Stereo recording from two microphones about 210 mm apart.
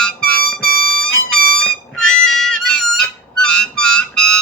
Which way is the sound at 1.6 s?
Centre (ahead or behind).